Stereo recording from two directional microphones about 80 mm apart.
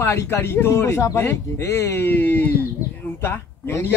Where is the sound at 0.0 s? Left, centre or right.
Left.